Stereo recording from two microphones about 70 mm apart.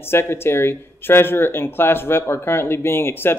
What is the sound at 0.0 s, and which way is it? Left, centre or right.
Speech, left.